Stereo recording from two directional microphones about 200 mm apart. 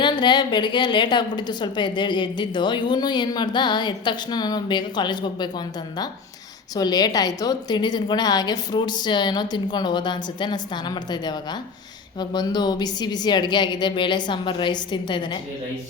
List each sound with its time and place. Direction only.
0.0 s a woman's voice: 25° left (ahead or behind)
6.7 s a woman's voice: 20° left (ahead or behind)